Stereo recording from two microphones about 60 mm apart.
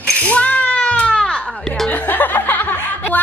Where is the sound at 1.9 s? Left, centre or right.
Left.